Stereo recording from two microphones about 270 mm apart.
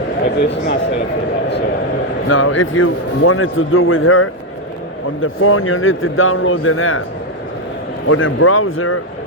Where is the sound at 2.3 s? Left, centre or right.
Left.